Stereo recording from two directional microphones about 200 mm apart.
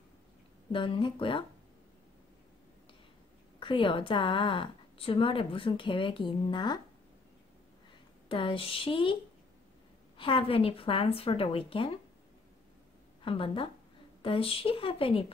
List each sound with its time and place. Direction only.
0.7 s a woman's voice: 25° left (ahead or behind)
3.5 s a woman's voice: 25° left (ahead or behind)
8.3 s a woman's voice: 25° left (ahead or behind)
10.1 s a woman's voice: 25° left (ahead or behind)
13.2 s a woman's voice: 25° left (ahead or behind)